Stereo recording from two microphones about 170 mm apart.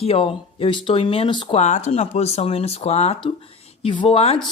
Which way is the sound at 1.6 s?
45° left (ahead or behind).